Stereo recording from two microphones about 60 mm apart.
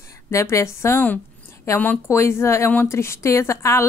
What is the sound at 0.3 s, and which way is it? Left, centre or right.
A woman's voice, left.